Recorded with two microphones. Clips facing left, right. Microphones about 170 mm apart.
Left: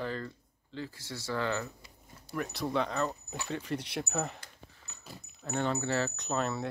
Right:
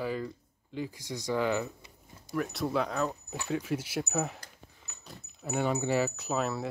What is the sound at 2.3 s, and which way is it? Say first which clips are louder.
Speech: right 2 dB; centre (ahead or behind).